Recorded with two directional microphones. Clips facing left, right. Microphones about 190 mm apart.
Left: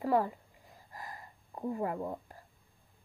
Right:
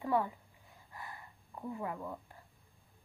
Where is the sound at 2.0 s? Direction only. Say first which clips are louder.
Left 5 dB; 35° left (ahead or behind).